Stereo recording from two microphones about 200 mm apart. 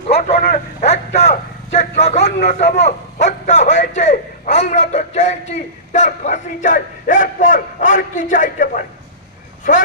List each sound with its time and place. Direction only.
0.1 s vehicle: 35° left (ahead or behind)
2.0 s a man's voice: 35° left (ahead or behind)